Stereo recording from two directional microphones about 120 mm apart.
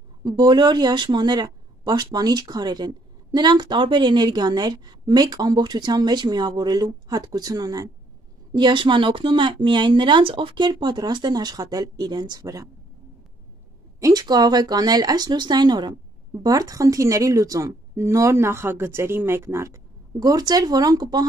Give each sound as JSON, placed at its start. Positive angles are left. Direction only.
{"t": 0.2, "sound": "speech", "side_deg": -40}
{"t": 8.5, "sound": "speech", "side_deg": -40}
{"t": 13.9, "sound": "a woman's voice", "side_deg": -30}